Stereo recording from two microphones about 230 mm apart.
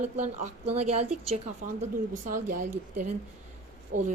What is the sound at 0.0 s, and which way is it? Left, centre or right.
Speech, right.